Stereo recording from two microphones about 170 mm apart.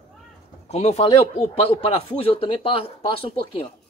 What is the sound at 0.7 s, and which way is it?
A man's voice, 40° left (ahead or behind).